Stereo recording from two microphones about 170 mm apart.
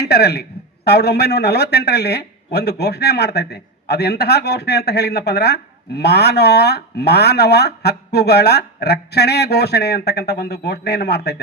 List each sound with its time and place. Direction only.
0.0 s speech: 75° left (ahead or behind)